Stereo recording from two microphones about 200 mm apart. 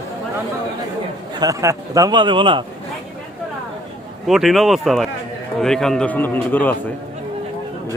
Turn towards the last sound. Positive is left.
turn(degrees=10)  # may be behind; listen again after turning